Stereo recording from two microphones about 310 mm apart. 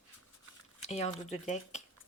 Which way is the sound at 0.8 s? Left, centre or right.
Left.